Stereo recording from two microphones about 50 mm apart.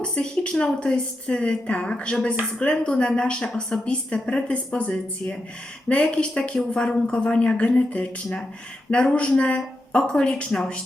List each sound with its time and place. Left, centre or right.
0.0 s a woman's voice: centre